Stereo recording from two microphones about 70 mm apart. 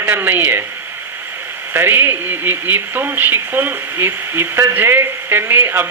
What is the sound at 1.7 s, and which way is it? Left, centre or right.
Speech, right.